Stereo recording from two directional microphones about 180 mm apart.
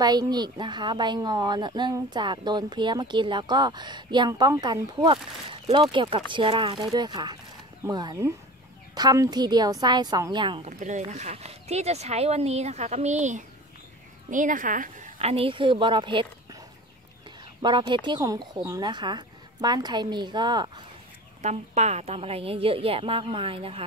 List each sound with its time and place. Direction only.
0.0 s a woman's voice: 20° right (ahead or behind)
10.8 s speech: 40° right (ahead or behind)
17.6 s a woman's voice: 25° right (ahead or behind)
21.4 s speech: 40° right (ahead or behind)